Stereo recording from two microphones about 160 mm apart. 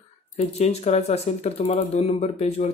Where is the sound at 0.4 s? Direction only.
40° left (ahead or behind).